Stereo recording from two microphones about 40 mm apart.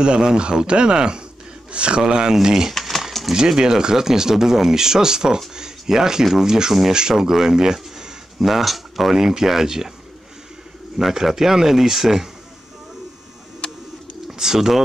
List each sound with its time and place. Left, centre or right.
0.0 s speech: centre
2.7 s pigeon: centre
3.3 s speech: centre
11.0 s speech: centre
14.2 s speech: centre